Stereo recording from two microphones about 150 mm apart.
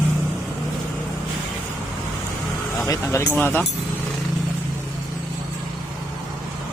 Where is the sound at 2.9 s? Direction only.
20° left (ahead or behind).